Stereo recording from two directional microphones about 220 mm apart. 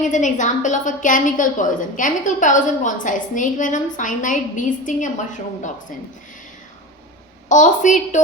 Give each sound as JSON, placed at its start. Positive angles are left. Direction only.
{"t": 0.0, "sound": "a woman's voice", "side_deg": 35}
{"t": 7.4, "sound": "a woman's voice", "side_deg": 35}